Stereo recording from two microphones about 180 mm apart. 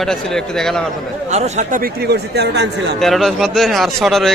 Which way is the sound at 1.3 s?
40° right (ahead or behind).